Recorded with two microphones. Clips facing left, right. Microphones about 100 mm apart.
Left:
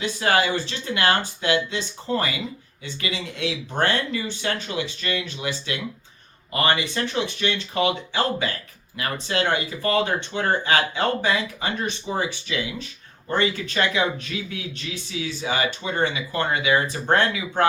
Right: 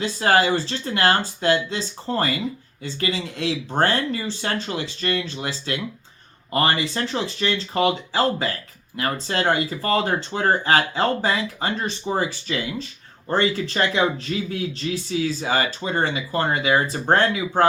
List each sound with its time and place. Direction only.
0.0 s speech: 35° right (ahead or behind)